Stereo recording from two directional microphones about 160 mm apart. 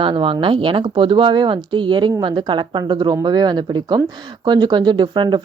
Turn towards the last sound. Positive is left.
turn(degrees=-30)  # may be behind; listen again after turning